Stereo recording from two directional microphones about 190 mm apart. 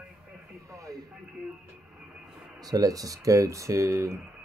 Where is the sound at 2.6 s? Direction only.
20° right (ahead or behind).